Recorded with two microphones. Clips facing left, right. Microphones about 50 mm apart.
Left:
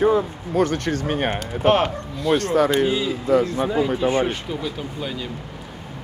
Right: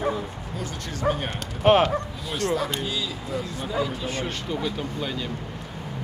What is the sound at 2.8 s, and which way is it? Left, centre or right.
Speech, left.